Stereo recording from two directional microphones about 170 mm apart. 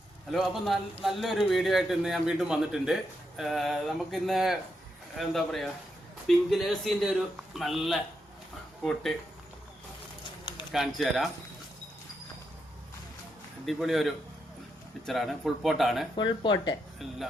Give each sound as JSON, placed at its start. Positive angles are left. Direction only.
{"t": 0.3, "sound": "a man's voice", "side_deg": 0}
{"t": 10.7, "sound": "a man's voice", "side_deg": 0}
{"t": 13.7, "sound": "a man's voice", "side_deg": 0}
{"t": 16.1, "sound": "speech", "side_deg": 25}